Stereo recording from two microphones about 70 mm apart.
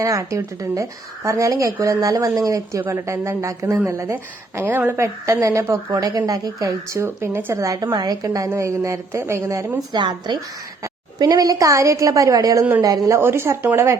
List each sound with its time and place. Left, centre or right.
0.0 s speech: right
2.9 s speech: right
4.5 s speech: right
4.9 s speech: right
7.6 s speech: right
7.9 s a woman's voice: right
8.4 s speech: right
9.9 s a woman's voice: right
11.2 s a woman's voice: right
13.1 s speech: right